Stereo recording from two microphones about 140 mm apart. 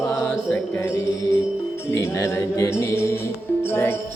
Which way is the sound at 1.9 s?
20° left (ahead or behind).